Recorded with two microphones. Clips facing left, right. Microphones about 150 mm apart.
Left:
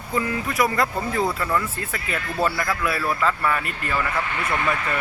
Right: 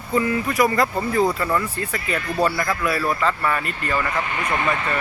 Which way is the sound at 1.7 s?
Centre (ahead or behind).